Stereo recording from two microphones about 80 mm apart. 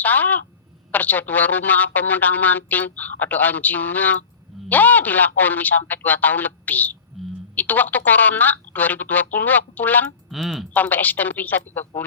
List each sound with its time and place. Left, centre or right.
0.0 s speech: left
7.1 s a sound: centre
7.5 s speech: left
10.2 s speech: centre
10.8 s speech: left